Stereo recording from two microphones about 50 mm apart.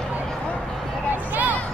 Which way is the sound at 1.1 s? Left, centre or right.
Right.